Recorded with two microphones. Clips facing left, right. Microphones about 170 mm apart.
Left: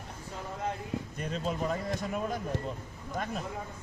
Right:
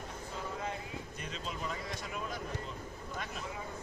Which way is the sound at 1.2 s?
45° left (ahead or behind).